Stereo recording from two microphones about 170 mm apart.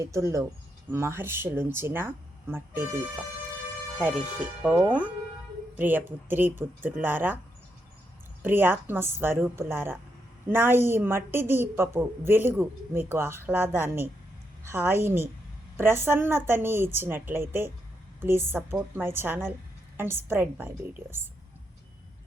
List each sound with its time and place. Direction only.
0.0 s a woman's voice: 20° right (ahead or behind)
4.0 s a woman's voice: 10° right (ahead or behind)
8.4 s a woman's voice: 10° right (ahead or behind)